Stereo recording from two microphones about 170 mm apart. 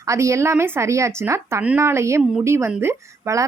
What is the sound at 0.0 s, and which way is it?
Speech, 20° right (ahead or behind).